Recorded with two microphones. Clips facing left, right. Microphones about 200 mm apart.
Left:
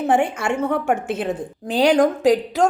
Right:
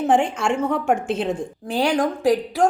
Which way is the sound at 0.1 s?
60° left (ahead or behind).